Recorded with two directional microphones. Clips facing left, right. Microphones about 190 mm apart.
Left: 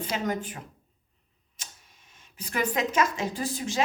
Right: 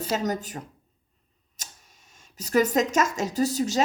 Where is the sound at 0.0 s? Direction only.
40° right (ahead or behind).